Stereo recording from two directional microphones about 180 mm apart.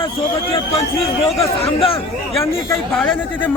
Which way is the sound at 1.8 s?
30° left (ahead or behind).